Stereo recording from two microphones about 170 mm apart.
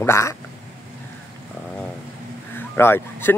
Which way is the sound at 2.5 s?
15° left (ahead or behind).